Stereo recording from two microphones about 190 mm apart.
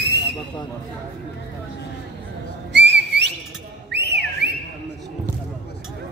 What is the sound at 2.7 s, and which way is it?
Whistling, 65° right (ahead or behind).